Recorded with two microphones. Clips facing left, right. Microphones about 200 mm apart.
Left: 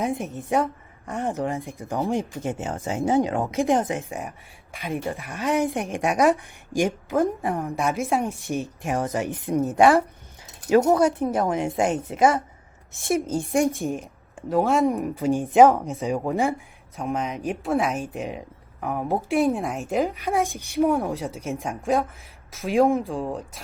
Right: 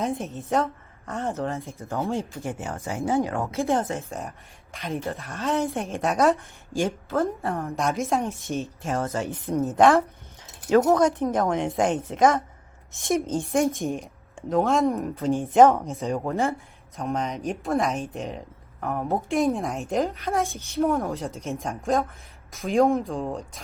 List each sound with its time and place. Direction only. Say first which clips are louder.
0.0 s speech: left 1 dB; 15° left (ahead or behind)
15.7 s speech: left 1 dB; centre (ahead or behind)